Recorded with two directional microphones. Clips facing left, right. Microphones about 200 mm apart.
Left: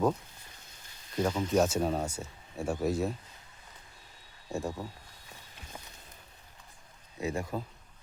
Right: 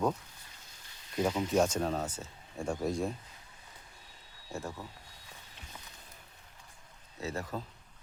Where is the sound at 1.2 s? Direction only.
10° right (ahead or behind).